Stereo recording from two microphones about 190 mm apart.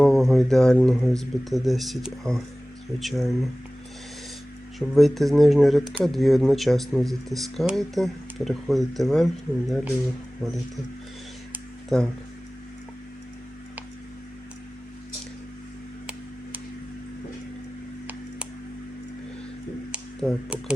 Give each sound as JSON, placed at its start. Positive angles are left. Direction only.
{"t": 0.0, "sound": "speech", "side_deg": 0}
{"t": 4.9, "sound": "speech", "side_deg": 0}
{"t": 11.9, "sound": "speech", "side_deg": 5}
{"t": 19.9, "sound": "speech", "side_deg": 0}